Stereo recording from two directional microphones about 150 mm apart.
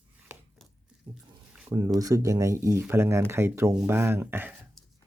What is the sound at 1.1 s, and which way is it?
Speech, 15° right (ahead or behind).